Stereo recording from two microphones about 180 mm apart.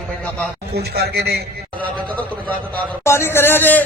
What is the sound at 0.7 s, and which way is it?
Speech, 65° right (ahead or behind).